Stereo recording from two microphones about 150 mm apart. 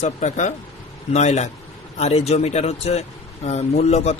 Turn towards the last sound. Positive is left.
turn(degrees=45)  # may be behind; listen again after turning